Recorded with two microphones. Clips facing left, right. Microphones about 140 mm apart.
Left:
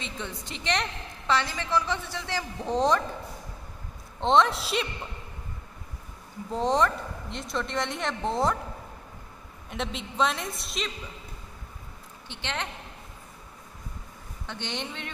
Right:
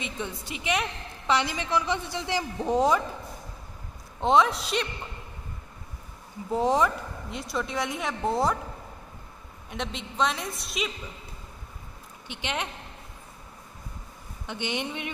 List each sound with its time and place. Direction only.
0.0 s a woman's voice: 10° right (ahead or behind)
4.2 s a woman's voice: 5° right (ahead or behind)
6.5 s a woman's voice: 5° right (ahead or behind)
9.7 s a woman's voice: centre (ahead or behind)
12.3 s a woman's voice: 15° right (ahead or behind)
14.4 s a woman's voice: 15° right (ahead or behind)